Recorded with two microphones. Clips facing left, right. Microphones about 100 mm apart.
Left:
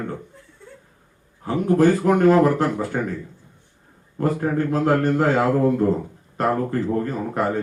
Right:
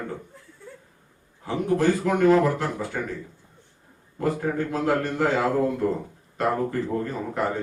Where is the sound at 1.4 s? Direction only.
45° left (ahead or behind).